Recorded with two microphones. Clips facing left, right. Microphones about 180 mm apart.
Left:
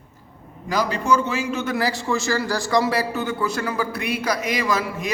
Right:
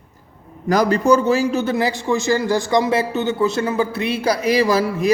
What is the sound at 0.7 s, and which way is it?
Speech, 50° right (ahead or behind).